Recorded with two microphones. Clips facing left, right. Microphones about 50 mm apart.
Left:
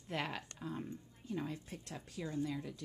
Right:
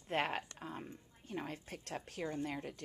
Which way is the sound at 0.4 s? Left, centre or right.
Right.